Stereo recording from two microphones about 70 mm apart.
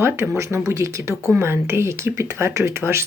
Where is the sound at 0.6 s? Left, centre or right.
Right.